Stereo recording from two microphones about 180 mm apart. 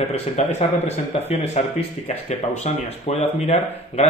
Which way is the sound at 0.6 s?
35° left (ahead or behind).